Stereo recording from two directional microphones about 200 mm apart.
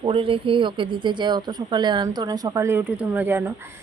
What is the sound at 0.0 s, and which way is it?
Speech, 25° right (ahead or behind).